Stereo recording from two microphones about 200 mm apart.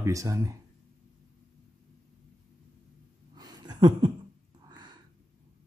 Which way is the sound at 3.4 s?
20° right (ahead or behind).